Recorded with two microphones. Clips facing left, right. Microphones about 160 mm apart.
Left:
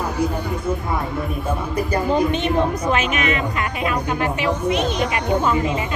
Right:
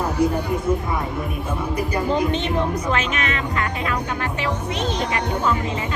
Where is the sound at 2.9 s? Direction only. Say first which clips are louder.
Left 3 dB; 15° left (ahead or behind).